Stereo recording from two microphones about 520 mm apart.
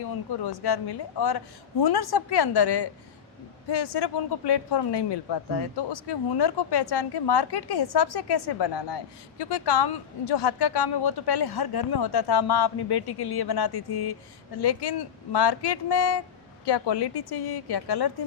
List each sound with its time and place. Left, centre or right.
0.0 s speech: left